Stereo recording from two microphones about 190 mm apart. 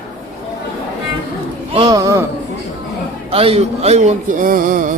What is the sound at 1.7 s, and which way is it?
Speech, 25° right (ahead or behind).